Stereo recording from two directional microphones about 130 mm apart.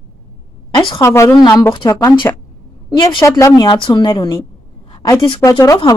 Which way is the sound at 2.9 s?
40° left (ahead or behind).